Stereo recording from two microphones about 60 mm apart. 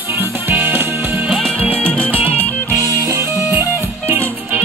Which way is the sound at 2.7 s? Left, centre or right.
Right.